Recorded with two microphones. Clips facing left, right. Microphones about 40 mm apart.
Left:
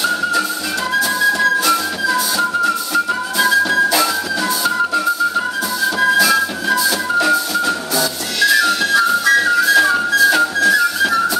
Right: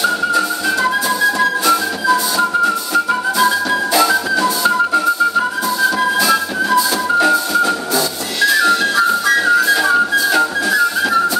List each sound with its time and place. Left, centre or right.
1.7 s music: centre
5.9 s music: centre
6.7 s music: centre
8.4 s whistle: right
9.8 s music: centre